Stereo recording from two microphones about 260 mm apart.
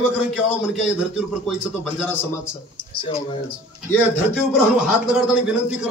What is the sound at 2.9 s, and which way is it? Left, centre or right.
Speech, left.